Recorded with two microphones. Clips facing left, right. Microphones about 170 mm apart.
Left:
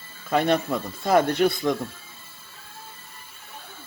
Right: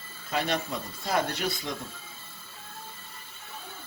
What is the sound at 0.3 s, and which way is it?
Speech, 55° left (ahead or behind).